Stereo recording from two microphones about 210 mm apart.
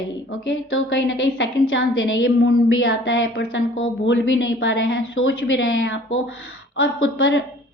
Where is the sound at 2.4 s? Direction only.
50° left (ahead or behind).